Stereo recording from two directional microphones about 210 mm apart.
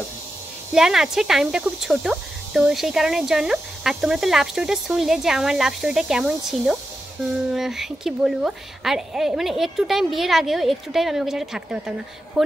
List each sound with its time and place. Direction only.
0.7 s speech: centre (ahead or behind)